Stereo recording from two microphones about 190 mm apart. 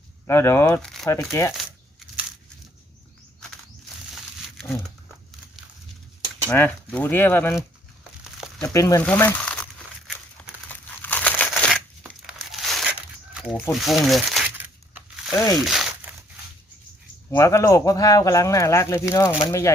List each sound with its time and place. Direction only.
0.3 s speech: 15° left (ahead or behind)
0.9 s speech: centre (ahead or behind)
1.1 s speech: 15° left (ahead or behind)
6.5 s speech: 10° left (ahead or behind)
8.6 s speech: 15° left (ahead or behind)
10.7 s crumpling: 10° left (ahead or behind)
13.7 s speech: centre (ahead or behind)
15.3 s speech: 15° left (ahead or behind)
15.6 s crumpling: centre (ahead or behind)
17.3 s speech: 15° left (ahead or behind)